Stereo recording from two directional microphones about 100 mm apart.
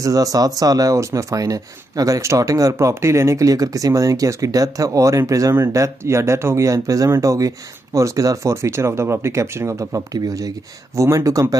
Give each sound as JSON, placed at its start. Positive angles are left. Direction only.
{"t": 0.0, "sound": "speech", "side_deg": -35}